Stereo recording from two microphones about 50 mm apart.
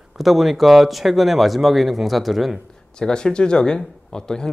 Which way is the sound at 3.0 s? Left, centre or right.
Centre.